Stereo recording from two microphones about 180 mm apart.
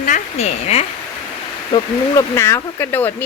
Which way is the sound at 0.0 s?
40° left (ahead or behind).